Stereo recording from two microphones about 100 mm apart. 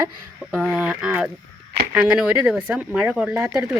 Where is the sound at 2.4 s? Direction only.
5° right (ahead or behind).